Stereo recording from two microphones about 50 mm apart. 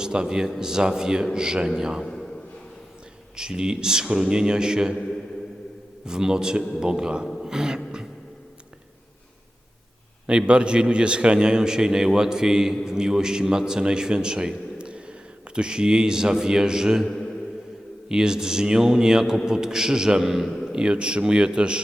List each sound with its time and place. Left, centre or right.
0.0 s a man's voice: centre
2.1 s a sound: centre
3.3 s a man's voice: centre
6.1 s a man's voice: centre
7.4 s beatboxing: centre
10.2 s a man's voice: right
17.1 s mantra: centre
18.1 s a man's voice: centre
20.5 s a sound: centre
20.7 s a man's voice: centre